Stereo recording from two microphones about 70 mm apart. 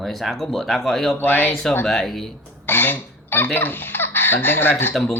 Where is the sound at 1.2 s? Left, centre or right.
Left.